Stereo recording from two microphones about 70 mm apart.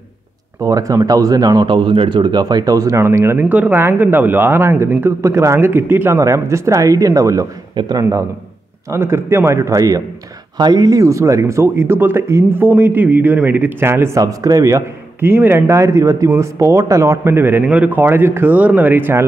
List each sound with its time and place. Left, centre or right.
0.6 s speech: right
3.4 s a man's voice: right
6.1 s speech: right
8.9 s speech: right
10.6 s speech: right
11.6 s a man's voice: right
14.2 s speech: right
15.1 s speech: right
17.6 s speech: right